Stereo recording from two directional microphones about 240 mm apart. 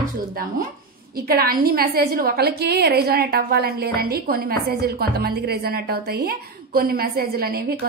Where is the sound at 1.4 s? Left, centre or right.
Right.